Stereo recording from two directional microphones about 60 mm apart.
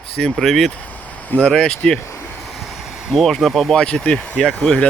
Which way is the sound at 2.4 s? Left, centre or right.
Centre.